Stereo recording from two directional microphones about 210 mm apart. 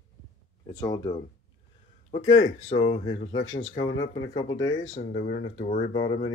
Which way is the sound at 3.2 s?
65° left (ahead or behind).